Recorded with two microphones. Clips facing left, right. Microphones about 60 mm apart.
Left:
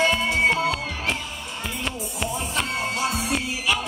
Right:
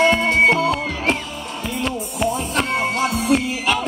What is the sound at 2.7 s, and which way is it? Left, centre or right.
Music, right.